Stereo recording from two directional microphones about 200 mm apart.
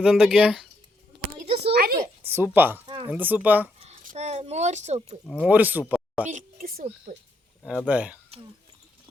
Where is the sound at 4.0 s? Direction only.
35° right (ahead or behind).